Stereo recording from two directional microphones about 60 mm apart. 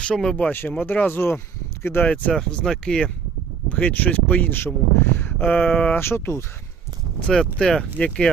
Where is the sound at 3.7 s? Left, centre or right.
Left.